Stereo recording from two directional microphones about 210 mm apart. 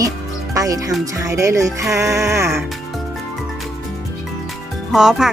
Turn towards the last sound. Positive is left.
turn(degrees=-5)  # may be behind; listen again after turning